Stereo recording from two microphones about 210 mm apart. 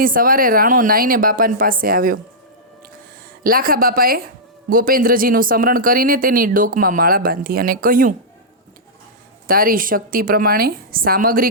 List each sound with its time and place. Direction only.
0.0 s speech: 40° right (ahead or behind)
3.4 s speech: 45° right (ahead or behind)
9.5 s speech: 45° right (ahead or behind)